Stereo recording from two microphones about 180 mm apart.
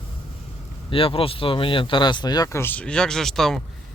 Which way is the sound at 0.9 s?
30° left (ahead or behind).